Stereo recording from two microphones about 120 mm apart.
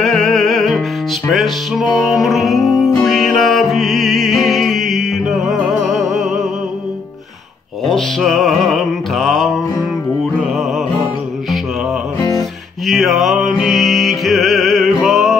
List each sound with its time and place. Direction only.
0.0 s music: 5° left (ahead or behind)
7.8 s music: 5° left (ahead or behind)
12.2 s music: 30° left (ahead or behind)
12.8 s music: centre (ahead or behind)